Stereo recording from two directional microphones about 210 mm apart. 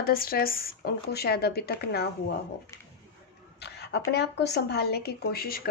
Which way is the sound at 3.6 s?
55° left (ahead or behind).